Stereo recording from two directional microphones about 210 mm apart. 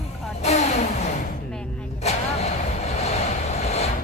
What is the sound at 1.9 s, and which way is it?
Vehicle, 30° left (ahead or behind).